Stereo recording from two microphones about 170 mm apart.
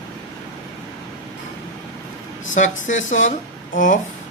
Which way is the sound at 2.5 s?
45° left (ahead or behind).